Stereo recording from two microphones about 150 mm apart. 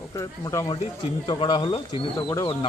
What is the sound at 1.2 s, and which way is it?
A man's voice, 30° left (ahead or behind).